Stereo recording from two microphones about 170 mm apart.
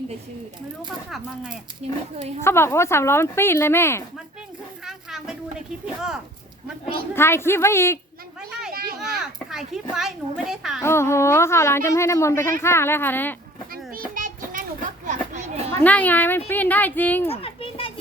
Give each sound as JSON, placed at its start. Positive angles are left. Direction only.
{"t": 1.8, "sound": "a woman's voice", "side_deg": -40}
{"t": 2.4, "sound": "a woman's voice", "side_deg": 15}
{"t": 4.9, "sound": "a woman's voice", "side_deg": -5}
{"t": 7.1, "sound": "a woman's voice", "side_deg": 15}
{"t": 8.7, "sound": "a sound", "side_deg": -60}
{"t": 9.2, "sound": "a child's voice", "side_deg": -5}
{"t": 10.8, "sound": "a woman's voice", "side_deg": 15}
{"t": 14.1, "sound": "children playing", "side_deg": -55}
{"t": 15.0, "sound": "a sound", "side_deg": -45}
{"t": 15.8, "sound": "a woman's voice", "side_deg": 10}
{"t": 17.2, "sound": "children playing", "side_deg": 35}